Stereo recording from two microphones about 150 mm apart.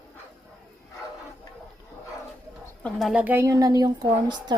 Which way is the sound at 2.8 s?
Centre (ahead or behind).